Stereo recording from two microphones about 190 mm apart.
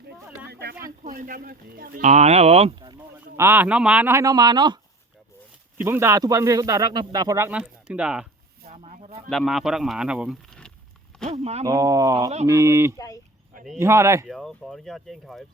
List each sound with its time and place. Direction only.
0.4 s a sound: 55° right (ahead or behind)
1.0 s speech: 45° right (ahead or behind); by 2.9 s 30° right (ahead or behind)
3.2 s speech: 10° right (ahead or behind)
5.7 s speech: 10° right (ahead or behind)
8.6 s a sound: 35° right (ahead or behind)
9.3 s speech: centre (ahead or behind)
11.3 s speech: 35° right (ahead or behind)
11.6 s speech: 20° right (ahead or behind)
14.3 s speech: centre (ahead or behind)